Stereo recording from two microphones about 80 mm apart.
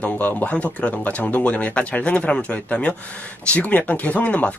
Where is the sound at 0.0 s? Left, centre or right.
Left.